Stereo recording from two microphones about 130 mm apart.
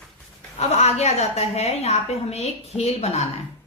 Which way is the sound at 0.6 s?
55° left (ahead or behind).